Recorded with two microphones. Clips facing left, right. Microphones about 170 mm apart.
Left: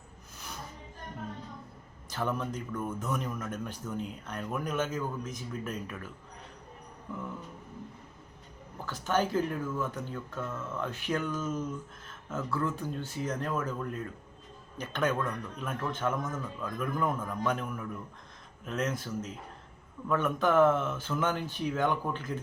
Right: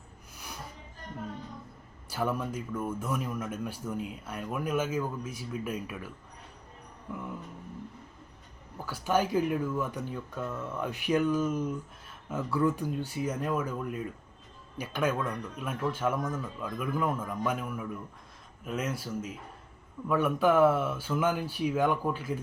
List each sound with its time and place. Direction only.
2.0 s speech: 10° right (ahead or behind)
8.9 s speech: 10° right (ahead or behind)